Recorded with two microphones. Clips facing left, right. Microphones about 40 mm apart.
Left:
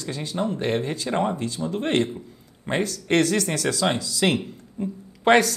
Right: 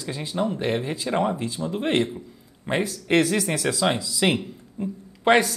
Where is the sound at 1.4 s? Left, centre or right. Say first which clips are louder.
Even; centre.